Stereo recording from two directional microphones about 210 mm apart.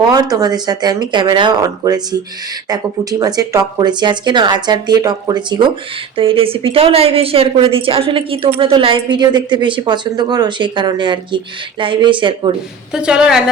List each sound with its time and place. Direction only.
0.1 s a woman's voice: 15° right (ahead or behind)
12.9 s a woman's voice: 5° right (ahead or behind)